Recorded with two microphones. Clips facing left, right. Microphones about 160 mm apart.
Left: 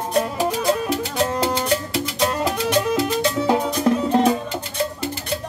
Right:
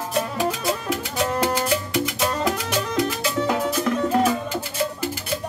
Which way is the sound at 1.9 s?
30° left (ahead or behind).